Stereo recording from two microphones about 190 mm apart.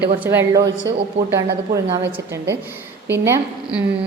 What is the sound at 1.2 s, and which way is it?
Speech, 35° right (ahead or behind).